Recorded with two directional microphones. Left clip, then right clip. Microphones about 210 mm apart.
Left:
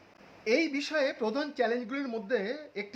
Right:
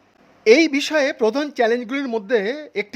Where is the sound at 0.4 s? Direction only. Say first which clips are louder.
Right 14 dB; 45° right (ahead or behind).